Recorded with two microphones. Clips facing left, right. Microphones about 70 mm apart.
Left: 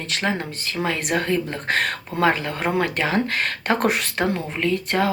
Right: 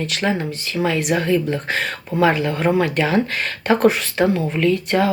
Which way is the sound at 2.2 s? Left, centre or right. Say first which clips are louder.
Right 4 dB; left.